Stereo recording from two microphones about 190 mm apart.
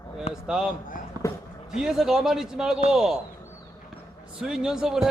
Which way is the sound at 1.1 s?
20° right (ahead or behind).